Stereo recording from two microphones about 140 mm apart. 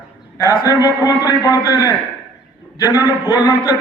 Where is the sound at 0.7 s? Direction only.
20° right (ahead or behind).